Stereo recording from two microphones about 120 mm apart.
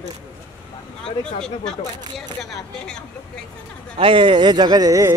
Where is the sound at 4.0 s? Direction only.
45° right (ahead or behind); by 5.1 s 30° right (ahead or behind).